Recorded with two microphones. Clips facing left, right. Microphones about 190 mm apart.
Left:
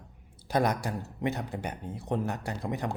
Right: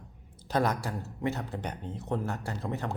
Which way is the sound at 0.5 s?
15° left (ahead or behind).